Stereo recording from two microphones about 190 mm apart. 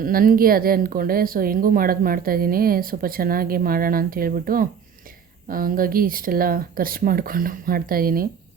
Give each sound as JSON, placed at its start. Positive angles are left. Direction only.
{"t": 0.0, "sound": "a woman's voice", "side_deg": -50}